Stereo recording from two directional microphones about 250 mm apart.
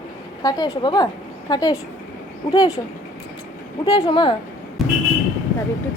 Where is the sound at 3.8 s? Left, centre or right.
Centre.